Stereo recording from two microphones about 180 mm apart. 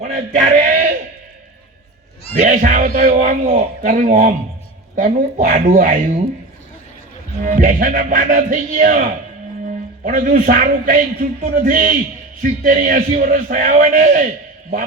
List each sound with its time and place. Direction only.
0.0 s a sound: 45° right (ahead or behind)
2.3 s a man's voice: 50° right (ahead or behind)
7.4 s a man's voice: 50° right (ahead or behind)